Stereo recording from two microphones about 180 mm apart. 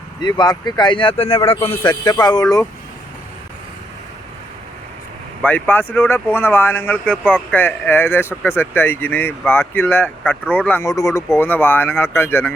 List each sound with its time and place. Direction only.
0.2 s a man's voice: 25° left (ahead or behind)
5.4 s speech: 10° left (ahead or behind)